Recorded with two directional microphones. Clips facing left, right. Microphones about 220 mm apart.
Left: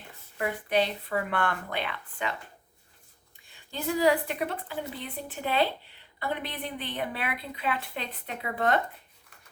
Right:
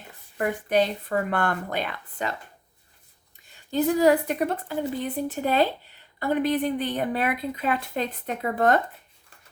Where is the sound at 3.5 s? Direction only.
45° right (ahead or behind).